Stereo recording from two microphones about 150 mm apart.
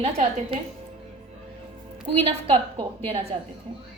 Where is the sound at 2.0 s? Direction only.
35° right (ahead or behind).